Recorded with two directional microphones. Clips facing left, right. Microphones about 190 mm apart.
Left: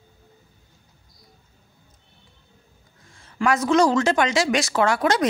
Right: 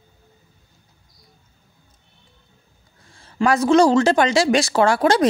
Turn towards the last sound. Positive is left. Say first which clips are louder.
# right 4 dB
turn(degrees=-30)  # may be behind; listen again after turning